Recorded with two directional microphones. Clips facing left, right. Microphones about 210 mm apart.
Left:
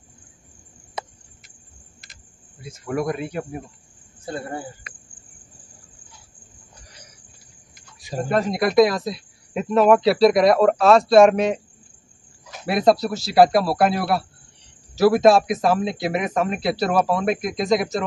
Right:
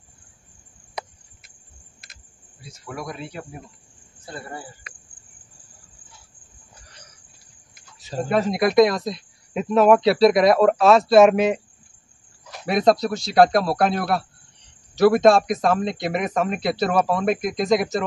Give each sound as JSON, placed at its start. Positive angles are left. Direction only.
{"t": 2.6, "sound": "speech", "side_deg": 50}
{"t": 8.3, "sound": "speech", "side_deg": 0}